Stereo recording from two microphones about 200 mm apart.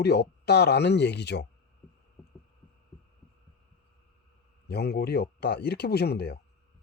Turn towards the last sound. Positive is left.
turn(degrees=55)  # may be behind; listen again after turning